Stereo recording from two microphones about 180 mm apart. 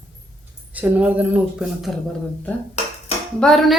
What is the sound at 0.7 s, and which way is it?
A woman's voice, 10° right (ahead or behind).